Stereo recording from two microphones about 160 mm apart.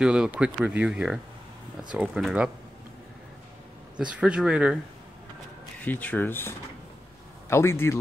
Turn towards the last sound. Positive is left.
turn(degrees=15)  # may be behind; listen again after turning